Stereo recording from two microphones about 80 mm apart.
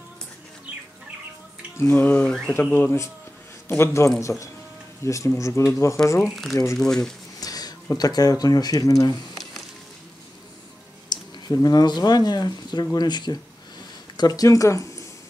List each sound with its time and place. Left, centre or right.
1.8 s speech: left
2.2 s mantra: centre
2.5 s a man's voice: left
7.0 s speech: left
11.1 s speech: left
14.1 s speech: left